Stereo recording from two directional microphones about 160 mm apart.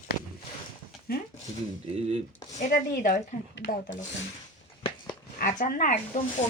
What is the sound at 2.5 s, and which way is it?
Speech, 55° left (ahead or behind).